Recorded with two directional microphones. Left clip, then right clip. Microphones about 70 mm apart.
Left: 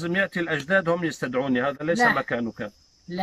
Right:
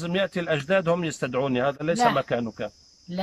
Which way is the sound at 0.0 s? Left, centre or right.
Centre.